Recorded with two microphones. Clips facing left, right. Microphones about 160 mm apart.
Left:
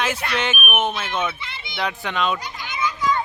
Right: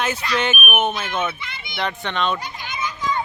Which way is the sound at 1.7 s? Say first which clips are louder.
Even; centre (ahead or behind).